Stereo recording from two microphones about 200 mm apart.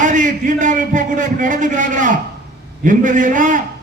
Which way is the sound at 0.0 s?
40° right (ahead or behind).